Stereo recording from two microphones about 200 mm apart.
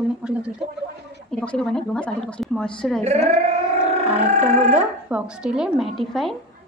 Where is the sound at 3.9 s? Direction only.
35° right (ahead or behind).